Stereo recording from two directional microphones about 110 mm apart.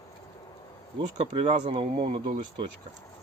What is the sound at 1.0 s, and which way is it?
Speech, 50° right (ahead or behind).